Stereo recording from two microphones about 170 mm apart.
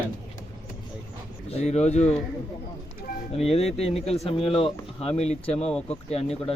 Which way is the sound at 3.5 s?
35° left (ahead or behind).